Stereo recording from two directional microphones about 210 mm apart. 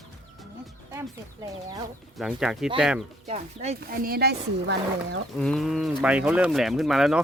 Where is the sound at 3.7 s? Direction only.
45° right (ahead or behind).